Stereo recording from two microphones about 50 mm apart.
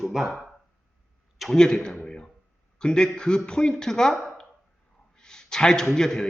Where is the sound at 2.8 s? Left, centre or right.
Centre.